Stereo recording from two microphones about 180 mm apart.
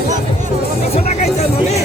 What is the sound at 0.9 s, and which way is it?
Music, 35° left (ahead or behind).